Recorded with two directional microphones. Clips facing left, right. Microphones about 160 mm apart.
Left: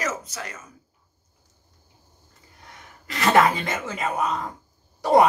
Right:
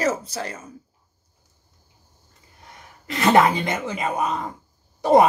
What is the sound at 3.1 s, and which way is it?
Speech, 20° right (ahead or behind).